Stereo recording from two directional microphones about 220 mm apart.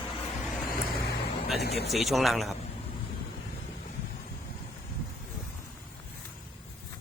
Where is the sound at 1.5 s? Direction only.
45° left (ahead or behind).